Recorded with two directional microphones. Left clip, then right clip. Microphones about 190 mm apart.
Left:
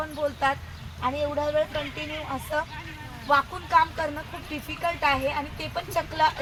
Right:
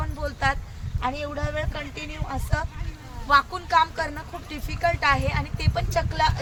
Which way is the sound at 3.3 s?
15° right (ahead or behind).